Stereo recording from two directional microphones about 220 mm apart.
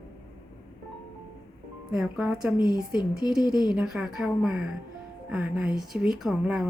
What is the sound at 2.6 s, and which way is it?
Speech, 20° left (ahead or behind).